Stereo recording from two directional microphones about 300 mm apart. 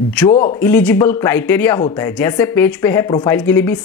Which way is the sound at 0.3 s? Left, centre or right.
Centre.